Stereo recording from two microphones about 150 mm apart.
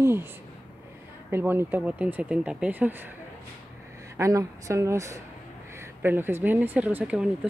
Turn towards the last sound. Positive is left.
turn(degrees=-5)  # may be behind; listen again after turning